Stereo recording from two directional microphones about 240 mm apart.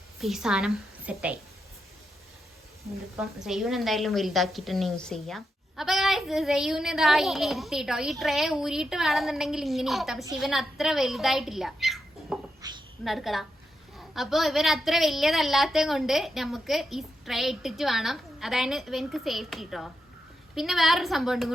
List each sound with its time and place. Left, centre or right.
0.2 s a woman's voice: centre
3.2 s a woman's voice: centre
12.6 s a sound: centre
13.1 s a woman's voice: centre